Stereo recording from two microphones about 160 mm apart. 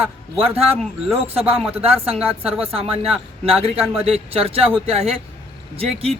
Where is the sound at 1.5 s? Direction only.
5° right (ahead or behind).